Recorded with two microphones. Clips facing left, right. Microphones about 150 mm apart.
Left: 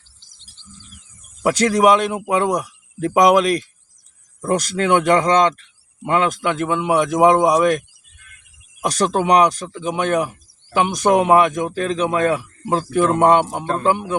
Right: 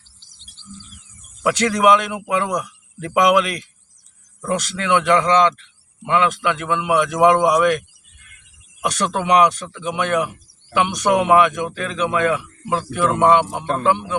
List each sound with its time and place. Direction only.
1.5 s speech: 35° left (ahead or behind)